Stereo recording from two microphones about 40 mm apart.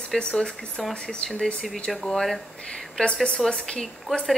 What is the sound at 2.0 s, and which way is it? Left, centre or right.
Speech, centre.